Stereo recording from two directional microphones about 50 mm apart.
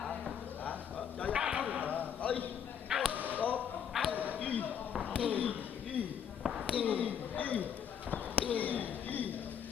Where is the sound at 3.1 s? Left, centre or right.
Right.